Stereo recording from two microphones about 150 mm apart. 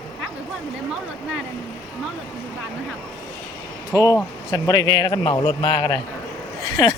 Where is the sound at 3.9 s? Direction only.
20° left (ahead or behind).